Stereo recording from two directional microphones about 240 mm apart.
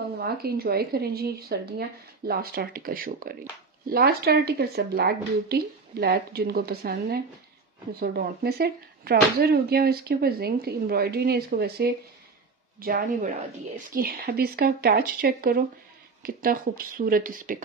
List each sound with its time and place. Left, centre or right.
0.2 s speech: right